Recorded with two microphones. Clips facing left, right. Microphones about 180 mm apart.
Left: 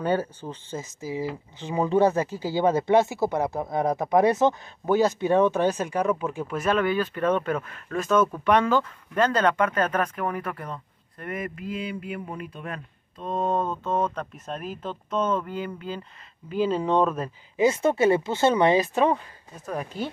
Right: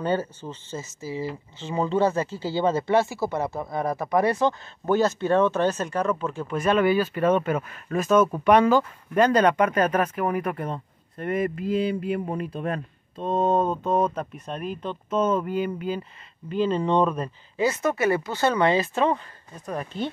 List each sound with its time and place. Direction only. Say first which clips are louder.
0.0 s speech: even; 10° left (ahead or behind); by 10.5 s 10° right (ahead or behind)
10.5 s speech: right 5 dB; 25° right (ahead or behind)
13.3 s mantra: right 4 dB; 20° right (ahead or behind)
14.3 s speech: right 2 dB; centre (ahead or behind)
16.4 s speech: right 1 dB; 5° left (ahead or behind)
17.6 s speech: left 3 dB; 25° left (ahead or behind); by 20.1 s 5° left (ahead or behind)